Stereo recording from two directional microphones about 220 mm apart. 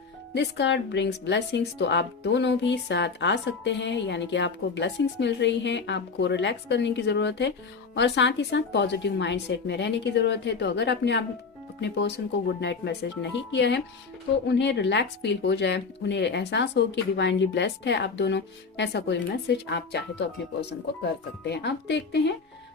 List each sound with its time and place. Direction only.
0.3 s a woman's voice: 55° left (ahead or behind)
21.4 s a woman's voice: 50° left (ahead or behind)